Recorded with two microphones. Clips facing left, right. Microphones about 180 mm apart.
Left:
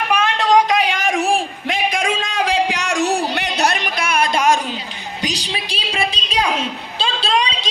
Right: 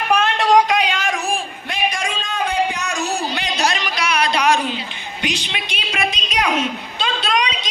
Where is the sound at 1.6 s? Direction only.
90° left.